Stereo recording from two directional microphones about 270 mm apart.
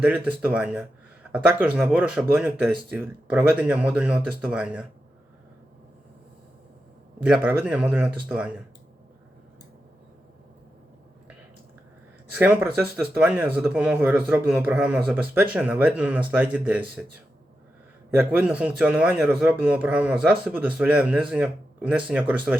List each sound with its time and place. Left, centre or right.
0.0 s speech: centre
7.2 s speech: centre
12.3 s speech: centre
18.1 s speech: centre